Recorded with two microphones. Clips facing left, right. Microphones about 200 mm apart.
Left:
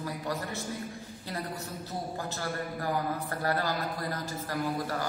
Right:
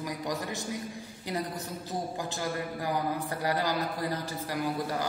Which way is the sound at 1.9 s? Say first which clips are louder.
Right 2 dB; 15° right (ahead or behind).